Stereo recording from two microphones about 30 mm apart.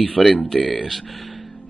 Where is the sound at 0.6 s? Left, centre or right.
Left.